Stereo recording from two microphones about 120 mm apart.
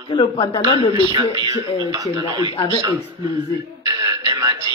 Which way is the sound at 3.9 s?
30° right (ahead or behind).